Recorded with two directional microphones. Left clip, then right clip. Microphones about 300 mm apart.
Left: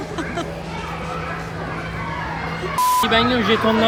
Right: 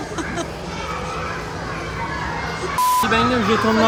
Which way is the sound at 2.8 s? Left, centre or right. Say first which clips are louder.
Left 1 dB; centre.